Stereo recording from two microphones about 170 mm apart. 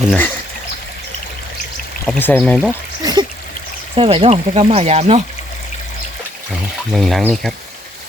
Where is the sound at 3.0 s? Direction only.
20° right (ahead or behind).